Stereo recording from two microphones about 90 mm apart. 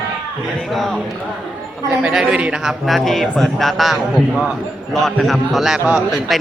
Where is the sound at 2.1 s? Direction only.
10° right (ahead or behind).